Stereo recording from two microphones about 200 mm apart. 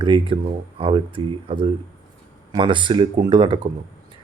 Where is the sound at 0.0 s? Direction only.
25° right (ahead or behind).